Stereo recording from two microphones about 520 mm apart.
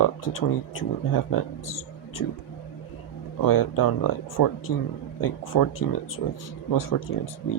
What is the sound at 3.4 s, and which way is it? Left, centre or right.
Speech, left.